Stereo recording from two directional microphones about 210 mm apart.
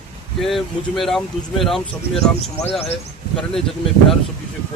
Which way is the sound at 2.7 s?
30° left (ahead or behind).